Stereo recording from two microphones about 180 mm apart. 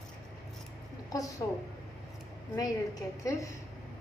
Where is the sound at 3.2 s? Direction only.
15° left (ahead or behind).